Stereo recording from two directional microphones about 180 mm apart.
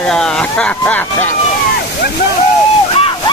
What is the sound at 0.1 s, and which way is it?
Speech, 5° left (ahead or behind).